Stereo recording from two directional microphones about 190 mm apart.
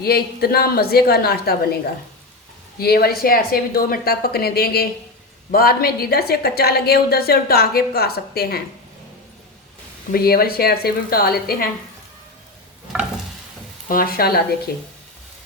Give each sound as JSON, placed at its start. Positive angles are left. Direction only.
{"t": 0.0, "sound": "speech", "side_deg": 55}
{"t": 2.7, "sound": "a woman's voice", "side_deg": 55}
{"t": 10.1, "sound": "speech", "side_deg": 50}
{"t": 13.8, "sound": "speech", "side_deg": 50}